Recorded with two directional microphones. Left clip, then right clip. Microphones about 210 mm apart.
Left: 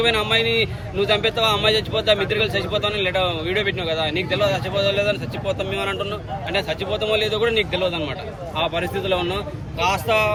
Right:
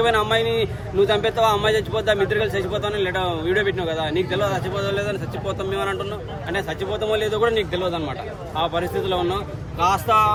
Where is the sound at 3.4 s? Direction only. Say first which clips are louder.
Right 1 dB; 50° right (ahead or behind).